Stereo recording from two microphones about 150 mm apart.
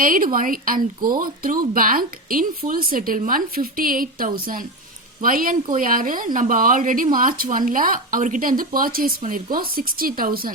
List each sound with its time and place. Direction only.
0.0 s a woman's voice: 65° right (ahead or behind)